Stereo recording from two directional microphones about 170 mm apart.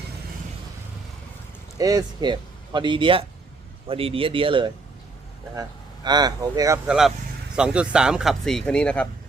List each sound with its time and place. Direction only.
1.8 s speech: 20° right (ahead or behind)
6.8 s speech: 5° right (ahead or behind)